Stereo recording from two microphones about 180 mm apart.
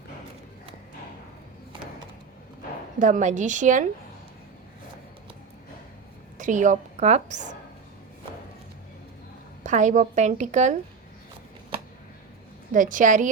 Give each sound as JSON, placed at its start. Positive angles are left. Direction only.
{"t": 3.0, "sound": "a woman's voice", "side_deg": -40}
{"t": 6.3, "sound": "a woman's voice", "side_deg": -45}
{"t": 9.6, "sound": "a woman's voice", "side_deg": -45}
{"t": 12.7, "sound": "a woman's voice", "side_deg": -45}